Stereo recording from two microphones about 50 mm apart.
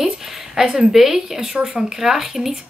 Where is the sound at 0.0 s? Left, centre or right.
Centre.